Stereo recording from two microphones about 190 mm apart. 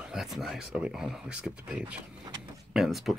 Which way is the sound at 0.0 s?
Centre (ahead or behind).